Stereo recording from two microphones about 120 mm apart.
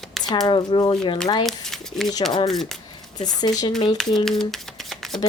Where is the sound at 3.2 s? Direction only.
35° left (ahead or behind).